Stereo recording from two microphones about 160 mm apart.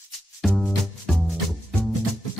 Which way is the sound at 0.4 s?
Centre (ahead or behind).